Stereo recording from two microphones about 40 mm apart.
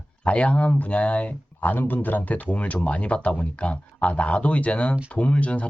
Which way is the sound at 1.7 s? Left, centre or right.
Left.